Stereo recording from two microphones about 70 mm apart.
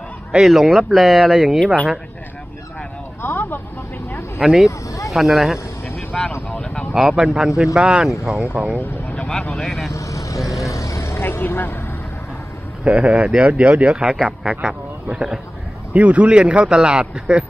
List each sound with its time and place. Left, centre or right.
0.3 s speech: centre
3.2 s vehicle: left
4.4 s speech: centre
4.6 s a sound: left
5.1 s speech: centre
5.9 s vehicle: centre
6.5 s a sound: centre
7.1 s speech: centre
8.5 s speech: centre
9.5 s speech: centre
9.9 s vehicle: left
12.8 s speech: centre